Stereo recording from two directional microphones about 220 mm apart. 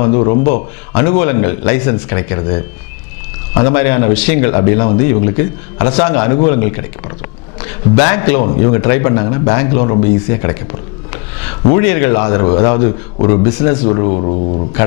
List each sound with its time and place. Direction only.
0.4 s speech: 40° left (ahead or behind)
0.9 s a man's voice: 10° left (ahead or behind)
13.8 s speech: 30° left (ahead or behind)